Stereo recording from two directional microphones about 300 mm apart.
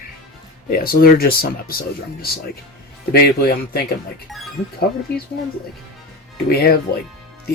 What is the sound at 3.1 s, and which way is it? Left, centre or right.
Speech, left.